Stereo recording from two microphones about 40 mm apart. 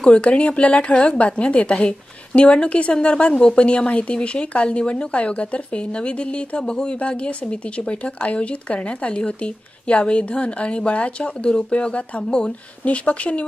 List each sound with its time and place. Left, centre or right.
0.0 s speech: left